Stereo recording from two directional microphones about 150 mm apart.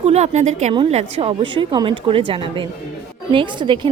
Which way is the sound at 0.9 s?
40° right (ahead or behind).